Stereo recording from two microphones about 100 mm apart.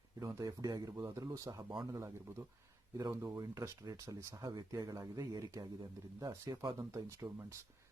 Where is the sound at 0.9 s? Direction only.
30° right (ahead or behind).